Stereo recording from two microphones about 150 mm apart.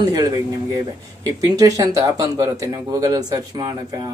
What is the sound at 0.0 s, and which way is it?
Speech, 25° right (ahead or behind).